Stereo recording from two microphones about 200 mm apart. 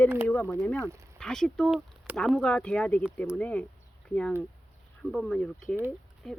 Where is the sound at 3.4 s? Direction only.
5° left (ahead or behind).